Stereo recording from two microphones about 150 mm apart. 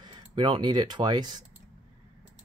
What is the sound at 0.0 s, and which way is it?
Speech, 30° right (ahead or behind).